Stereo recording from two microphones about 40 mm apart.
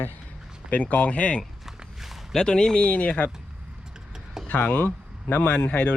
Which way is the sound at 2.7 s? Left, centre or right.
Left.